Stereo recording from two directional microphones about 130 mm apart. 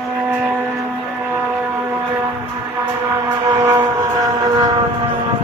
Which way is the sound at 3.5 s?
25° right (ahead or behind).